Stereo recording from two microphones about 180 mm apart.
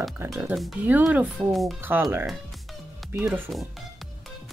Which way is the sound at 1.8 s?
10° right (ahead or behind).